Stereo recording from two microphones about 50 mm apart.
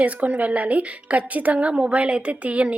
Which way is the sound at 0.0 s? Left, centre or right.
Right.